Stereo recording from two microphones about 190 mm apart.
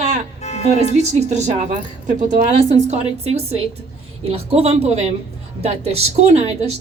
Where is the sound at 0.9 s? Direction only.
35° right (ahead or behind).